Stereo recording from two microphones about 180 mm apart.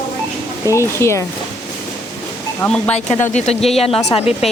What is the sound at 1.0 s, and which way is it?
Speech, 15° left (ahead or behind).